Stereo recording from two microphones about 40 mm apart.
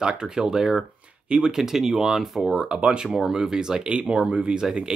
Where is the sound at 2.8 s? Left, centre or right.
Right.